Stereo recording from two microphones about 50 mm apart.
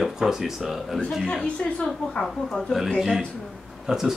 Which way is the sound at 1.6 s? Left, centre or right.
Centre.